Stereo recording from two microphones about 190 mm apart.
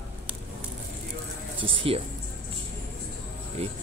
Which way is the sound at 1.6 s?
30° right (ahead or behind).